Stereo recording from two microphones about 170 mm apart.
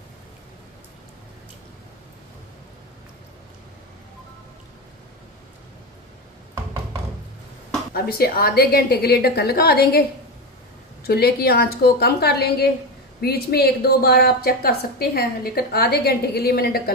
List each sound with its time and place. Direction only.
6.5 s a sound: 20° right (ahead or behind)
7.9 s a woman's voice: 65° left (ahead or behind)
11.1 s a woman's voice: 65° left (ahead or behind)